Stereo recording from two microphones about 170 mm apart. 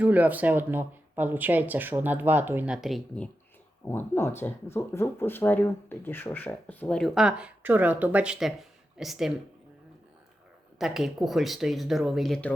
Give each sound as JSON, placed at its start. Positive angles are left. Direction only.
{"t": 0.0, "sound": "speech", "side_deg": -10}
{"t": 3.8, "sound": "speech", "side_deg": 15}
{"t": 10.8, "sound": "speech", "side_deg": -5}